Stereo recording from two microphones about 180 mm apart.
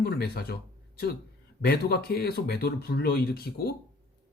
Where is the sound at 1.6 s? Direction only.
60° left (ahead or behind).